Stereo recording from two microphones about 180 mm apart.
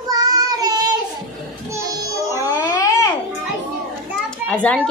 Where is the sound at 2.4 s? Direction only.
20° left (ahead or behind).